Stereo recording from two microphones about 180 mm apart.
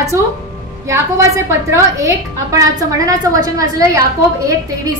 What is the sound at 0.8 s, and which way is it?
A woman's voice, 15° right (ahead or behind).